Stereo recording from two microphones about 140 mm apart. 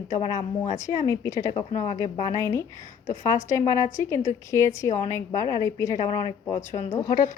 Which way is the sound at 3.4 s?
20° left (ahead or behind).